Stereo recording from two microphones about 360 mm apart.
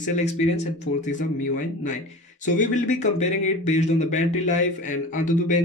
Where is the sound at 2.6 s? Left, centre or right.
Left.